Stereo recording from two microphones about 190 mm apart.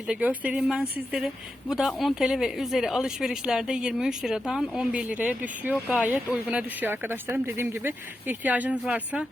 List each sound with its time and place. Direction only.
0.1 s speech: 5° right (ahead or behind)